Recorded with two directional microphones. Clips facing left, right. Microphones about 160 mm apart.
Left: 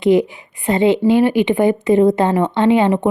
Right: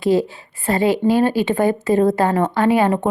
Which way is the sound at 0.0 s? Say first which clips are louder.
Left 3 dB; 20° left (ahead or behind).